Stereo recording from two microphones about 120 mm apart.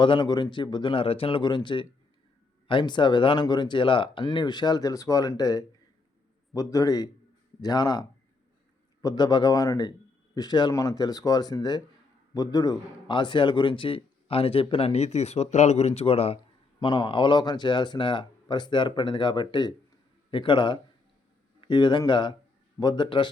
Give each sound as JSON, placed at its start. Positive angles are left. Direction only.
{"t": 0.0, "sound": "a man's voice", "side_deg": 40}
{"t": 16.8, "sound": "a man's voice", "side_deg": 45}